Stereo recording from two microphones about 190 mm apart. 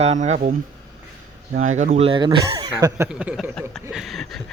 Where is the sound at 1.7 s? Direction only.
35° right (ahead or behind).